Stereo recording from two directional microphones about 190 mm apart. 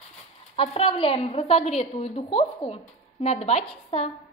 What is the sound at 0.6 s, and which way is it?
A woman's voice, 30° left (ahead or behind).